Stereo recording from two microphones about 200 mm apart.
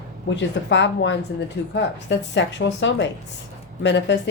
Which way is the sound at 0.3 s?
65° left (ahead or behind).